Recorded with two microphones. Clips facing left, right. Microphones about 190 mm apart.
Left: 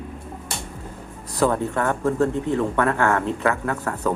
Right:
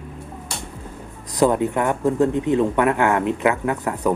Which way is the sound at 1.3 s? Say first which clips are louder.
Right 3 dB; 15° right (ahead or behind).